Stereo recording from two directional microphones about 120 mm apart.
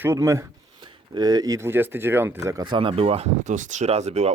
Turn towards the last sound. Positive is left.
turn(degrees=-65)  # may be behind; listen again after turning